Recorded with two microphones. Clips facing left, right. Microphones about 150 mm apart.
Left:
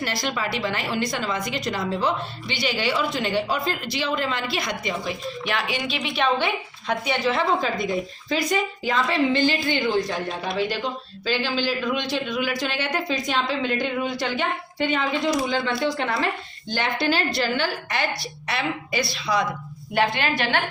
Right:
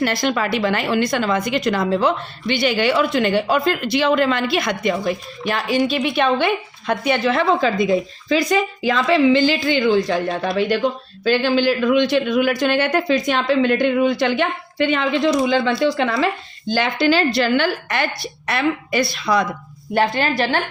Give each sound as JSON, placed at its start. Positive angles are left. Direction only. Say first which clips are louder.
{"t": 0.0, "sound": "a woman's voice", "louder": "right 7 dB", "side_deg": -60}
{"t": 5.5, "sound": "a woman's voice", "louder": "right 9 dB", "side_deg": -40}
{"t": 19.9, "sound": "speech", "louder": "right 4 dB", "side_deg": -40}